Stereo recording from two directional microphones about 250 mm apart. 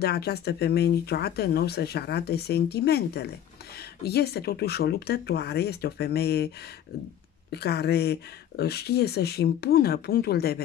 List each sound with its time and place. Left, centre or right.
0.0 s speech: left
7.5 s speech: left